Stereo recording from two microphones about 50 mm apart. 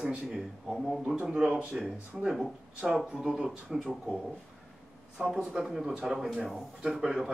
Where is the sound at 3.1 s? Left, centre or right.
Centre.